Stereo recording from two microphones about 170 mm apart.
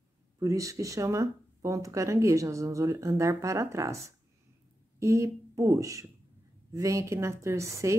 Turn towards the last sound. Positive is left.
turn(degrees=-20)  # may be behind; listen again after turning